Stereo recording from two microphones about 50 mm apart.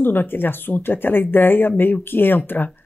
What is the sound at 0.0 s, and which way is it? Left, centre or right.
Speech, left.